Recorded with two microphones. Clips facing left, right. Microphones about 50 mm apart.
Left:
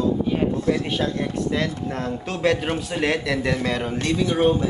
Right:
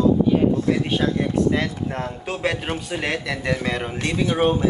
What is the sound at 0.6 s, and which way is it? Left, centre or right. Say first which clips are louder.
Speech: right 2 dB; centre.